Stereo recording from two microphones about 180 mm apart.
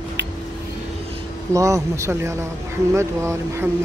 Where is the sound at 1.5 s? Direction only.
15° right (ahead or behind).